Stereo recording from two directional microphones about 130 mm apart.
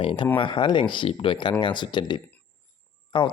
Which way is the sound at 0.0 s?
40° left (ahead or behind).